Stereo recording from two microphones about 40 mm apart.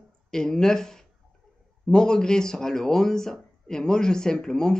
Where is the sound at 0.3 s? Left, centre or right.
Centre.